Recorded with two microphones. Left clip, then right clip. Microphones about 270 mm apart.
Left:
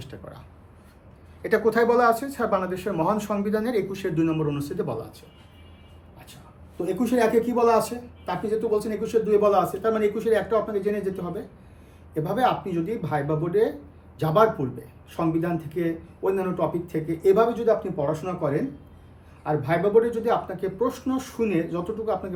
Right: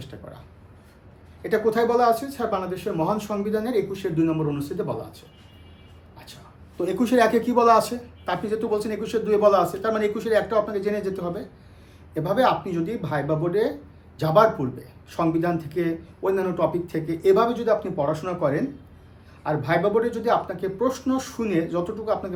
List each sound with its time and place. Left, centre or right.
0.0 s speech: centre
6.8 s speech: centre
8.5 s speech: centre
8.9 s speech: centre
19.5 s speech: centre